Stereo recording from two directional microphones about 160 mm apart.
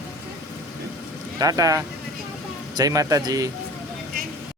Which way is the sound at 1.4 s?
20° right (ahead or behind).